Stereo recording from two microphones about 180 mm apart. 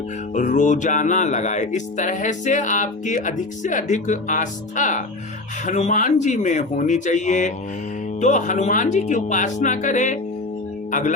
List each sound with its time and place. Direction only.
0.3 s speech: 45° left (ahead or behind)